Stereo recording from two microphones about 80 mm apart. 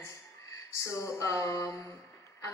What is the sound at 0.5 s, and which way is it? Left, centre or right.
A woman's voice, left.